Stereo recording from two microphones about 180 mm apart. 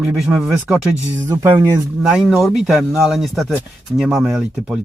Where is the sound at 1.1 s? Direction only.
15° right (ahead or behind).